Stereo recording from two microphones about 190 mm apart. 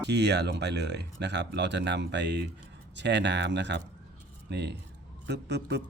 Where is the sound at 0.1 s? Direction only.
65° right (ahead or behind).